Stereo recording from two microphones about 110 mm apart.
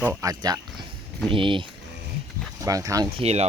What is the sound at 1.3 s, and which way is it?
Speech, 50° right (ahead or behind).